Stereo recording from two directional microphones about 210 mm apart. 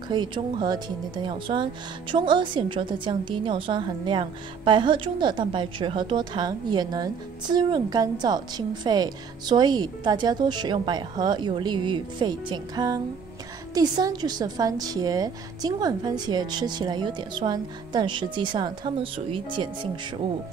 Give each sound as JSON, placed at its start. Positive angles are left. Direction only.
{"t": 0.1, "sound": "speech", "side_deg": -20}